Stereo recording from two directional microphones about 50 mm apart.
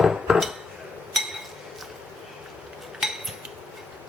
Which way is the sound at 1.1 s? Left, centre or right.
Centre.